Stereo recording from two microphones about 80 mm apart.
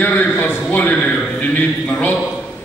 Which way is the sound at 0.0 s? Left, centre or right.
Left.